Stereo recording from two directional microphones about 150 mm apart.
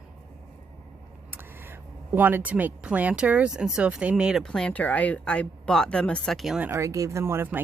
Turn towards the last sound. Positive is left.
turn(degrees=-15)  # may be behind; listen again after turning